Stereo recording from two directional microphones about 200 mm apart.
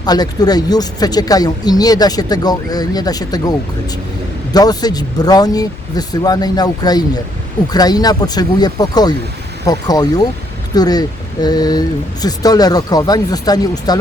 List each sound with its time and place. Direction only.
0.0 s speech: 20° left (ahead or behind)
4.5 s speech: 20° left (ahead or behind)